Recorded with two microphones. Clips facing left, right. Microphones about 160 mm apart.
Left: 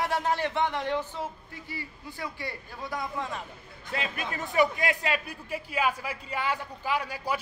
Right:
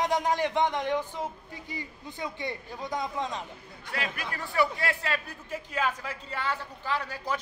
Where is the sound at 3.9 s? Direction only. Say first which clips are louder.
Left 2 dB; 20° left (ahead or behind).